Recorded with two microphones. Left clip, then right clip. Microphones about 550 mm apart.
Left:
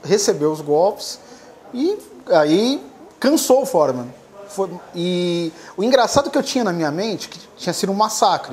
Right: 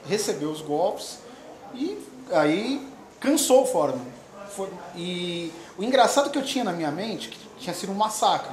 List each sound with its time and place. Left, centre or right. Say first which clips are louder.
0.0 s a woman's voice: left 10 dB; left